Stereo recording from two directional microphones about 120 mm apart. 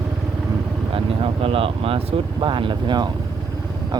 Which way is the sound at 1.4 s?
50° right (ahead or behind).